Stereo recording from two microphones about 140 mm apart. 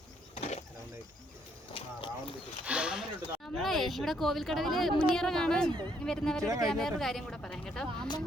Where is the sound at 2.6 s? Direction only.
10° right (ahead or behind).